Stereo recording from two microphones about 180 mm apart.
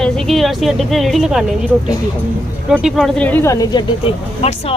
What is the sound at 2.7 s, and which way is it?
Speech, 5° right (ahead or behind).